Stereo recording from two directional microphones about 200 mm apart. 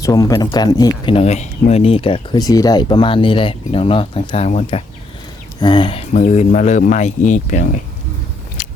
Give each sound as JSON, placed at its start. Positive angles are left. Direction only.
{"t": 0.0, "sound": "speech", "side_deg": 15}
{"t": 8.6, "sound": "biting", "side_deg": 40}